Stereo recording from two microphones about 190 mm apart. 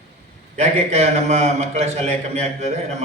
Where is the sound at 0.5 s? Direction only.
35° right (ahead or behind).